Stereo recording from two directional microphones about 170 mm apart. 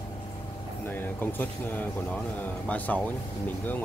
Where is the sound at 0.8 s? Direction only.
10° left (ahead or behind).